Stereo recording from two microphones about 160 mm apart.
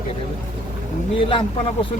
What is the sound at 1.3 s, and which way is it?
Speech, 35° left (ahead or behind).